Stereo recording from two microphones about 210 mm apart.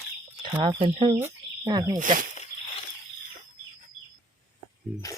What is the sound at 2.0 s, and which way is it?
Speech, 40° right (ahead or behind).